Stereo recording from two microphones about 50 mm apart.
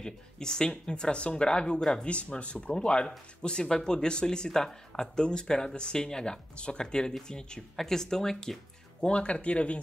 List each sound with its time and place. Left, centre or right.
0.0 s speech: centre
2.0 s speech: left